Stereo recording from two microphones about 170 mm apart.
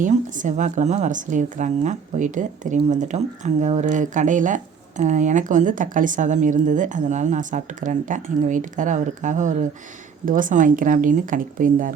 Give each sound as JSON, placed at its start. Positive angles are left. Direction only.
{"t": 0.0, "sound": "speech", "side_deg": -50}